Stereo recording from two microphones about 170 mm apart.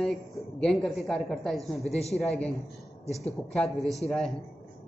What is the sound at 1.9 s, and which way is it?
Speech, 40° left (ahead or behind).